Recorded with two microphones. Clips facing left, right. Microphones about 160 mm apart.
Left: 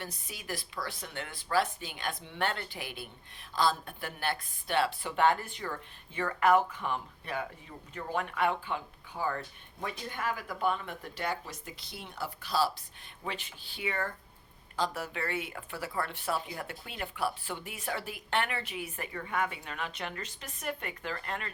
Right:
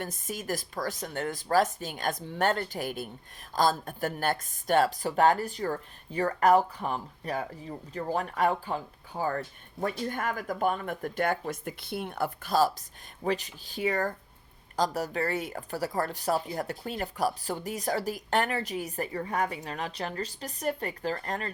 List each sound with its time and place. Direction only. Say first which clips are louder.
0.0 s speech: right 8 dB; 45° right (ahead or behind)